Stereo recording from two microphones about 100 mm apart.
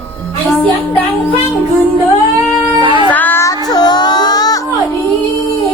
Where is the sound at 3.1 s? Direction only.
20° left (ahead or behind).